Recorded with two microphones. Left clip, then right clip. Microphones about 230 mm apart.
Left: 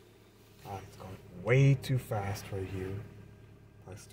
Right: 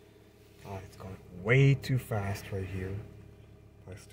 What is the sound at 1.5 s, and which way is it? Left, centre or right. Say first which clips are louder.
Speech: right 2 dB; right.